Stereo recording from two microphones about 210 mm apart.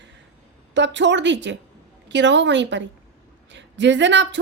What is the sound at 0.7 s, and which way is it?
A woman's voice, 60° right (ahead or behind).